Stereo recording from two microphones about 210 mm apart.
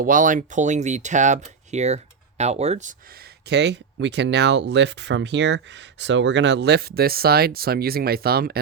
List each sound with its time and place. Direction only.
0.0 s speech: 40° right (ahead or behind)
3.2 s speech: 55° right (ahead or behind)